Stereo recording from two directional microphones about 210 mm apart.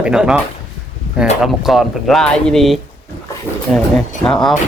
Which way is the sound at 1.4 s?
Centre (ahead or behind).